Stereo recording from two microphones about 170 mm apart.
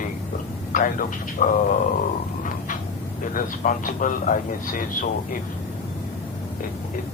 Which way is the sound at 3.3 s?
50° left (ahead or behind).